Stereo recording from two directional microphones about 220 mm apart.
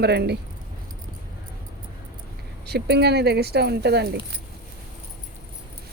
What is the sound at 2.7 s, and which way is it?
Speech, 50° right (ahead or behind).